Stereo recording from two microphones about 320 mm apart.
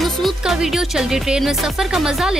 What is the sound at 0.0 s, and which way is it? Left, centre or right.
Speech, centre.